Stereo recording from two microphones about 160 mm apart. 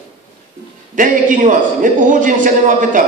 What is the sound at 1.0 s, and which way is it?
A man's voice, 55° right (ahead or behind).